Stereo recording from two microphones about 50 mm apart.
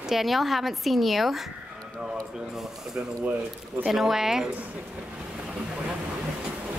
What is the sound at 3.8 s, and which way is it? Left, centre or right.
Speech, centre.